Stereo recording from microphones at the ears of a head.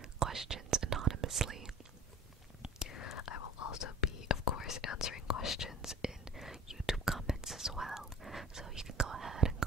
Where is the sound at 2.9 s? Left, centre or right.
Left.